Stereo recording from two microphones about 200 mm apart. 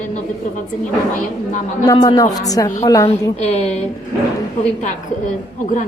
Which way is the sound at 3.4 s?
35° left (ahead or behind).